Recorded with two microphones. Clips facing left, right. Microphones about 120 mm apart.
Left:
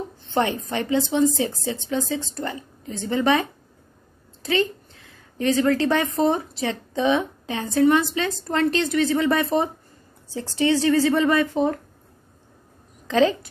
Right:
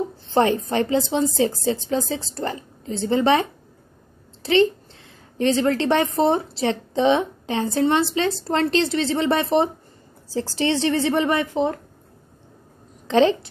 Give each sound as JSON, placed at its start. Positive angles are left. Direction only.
{"t": 0.2, "sound": "a woman's voice", "side_deg": -35}
{"t": 4.4, "sound": "a sound", "side_deg": -30}
{"t": 6.1, "sound": "a woman's voice", "side_deg": -30}
{"t": 13.0, "sound": "a woman's voice", "side_deg": -30}